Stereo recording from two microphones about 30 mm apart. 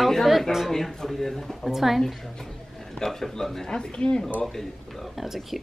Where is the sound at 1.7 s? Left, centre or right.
Centre.